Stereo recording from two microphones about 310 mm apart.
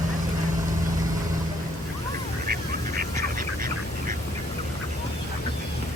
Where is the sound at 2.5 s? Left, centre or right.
Right.